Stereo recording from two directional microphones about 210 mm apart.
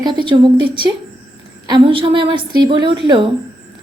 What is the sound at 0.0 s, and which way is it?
A woman's voice, 25° right (ahead or behind).